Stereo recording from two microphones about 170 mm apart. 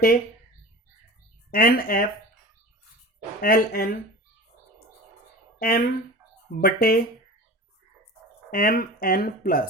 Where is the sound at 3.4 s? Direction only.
60° left (ahead or behind).